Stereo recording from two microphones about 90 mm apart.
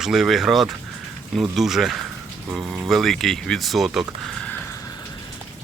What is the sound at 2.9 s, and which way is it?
Speech, centre (ahead or behind).